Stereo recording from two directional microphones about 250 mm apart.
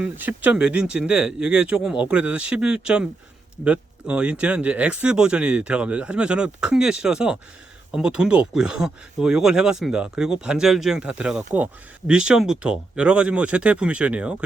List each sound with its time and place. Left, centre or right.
0.0 s speech: centre